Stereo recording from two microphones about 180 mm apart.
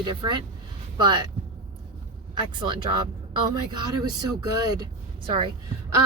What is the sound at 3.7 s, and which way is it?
Speech, 20° right (ahead or behind).